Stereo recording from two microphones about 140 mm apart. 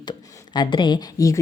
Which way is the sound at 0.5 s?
30° left (ahead or behind).